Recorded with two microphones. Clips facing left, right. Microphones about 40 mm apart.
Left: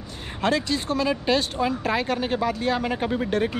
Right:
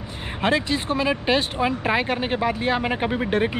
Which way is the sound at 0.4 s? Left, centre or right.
Right.